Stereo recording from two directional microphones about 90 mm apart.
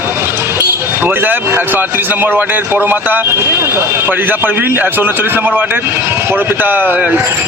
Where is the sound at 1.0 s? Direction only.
20° right (ahead or behind).